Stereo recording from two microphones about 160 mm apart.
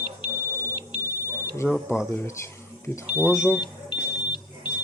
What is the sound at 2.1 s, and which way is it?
Speech, 15° left (ahead or behind).